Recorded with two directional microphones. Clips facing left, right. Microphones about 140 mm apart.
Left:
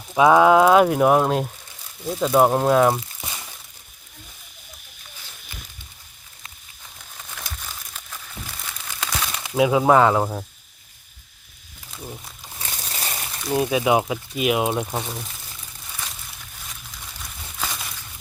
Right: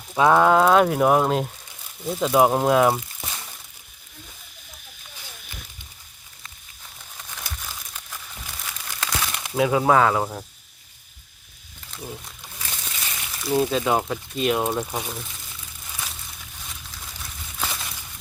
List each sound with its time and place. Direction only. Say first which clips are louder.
0.1 s speech: left 3 dB; 10° left (ahead or behind)
7.2 s crumpling: even; centre (ahead or behind)
9.1 s a sound: even; 5° right (ahead or behind)
9.6 s speech: left 2 dB; 10° left (ahead or behind)
11.9 s wild animals: right 1 dB; 5° left (ahead or behind)
12.5 s crumpling: left 3 dB; 40° left (ahead or behind)
13.4 s speech: right 1 dB; centre (ahead or behind)
13.7 s speech: left 3 dB; 10° left (ahead or behind)
15.9 s a sound: even; 5° right (ahead or behind)